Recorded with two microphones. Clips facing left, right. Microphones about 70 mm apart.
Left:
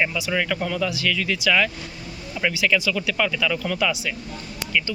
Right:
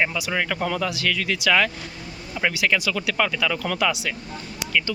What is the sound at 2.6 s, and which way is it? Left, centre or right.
Speech, right.